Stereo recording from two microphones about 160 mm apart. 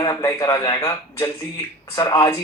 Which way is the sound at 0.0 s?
20° left (ahead or behind).